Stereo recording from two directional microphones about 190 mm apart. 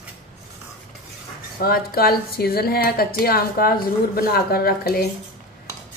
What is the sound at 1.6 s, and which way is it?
A woman's voice, 55° left (ahead or behind).